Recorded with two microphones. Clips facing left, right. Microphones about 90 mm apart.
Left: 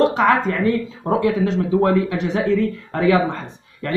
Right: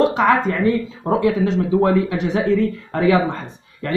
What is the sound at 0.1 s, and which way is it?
A man's voice, 5° right (ahead or behind).